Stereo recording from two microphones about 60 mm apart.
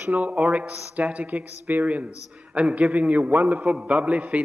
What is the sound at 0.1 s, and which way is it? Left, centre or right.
A man's voice, right.